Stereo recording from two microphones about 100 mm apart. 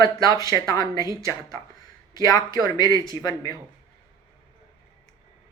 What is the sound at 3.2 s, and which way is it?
Speech, 40° left (ahead or behind).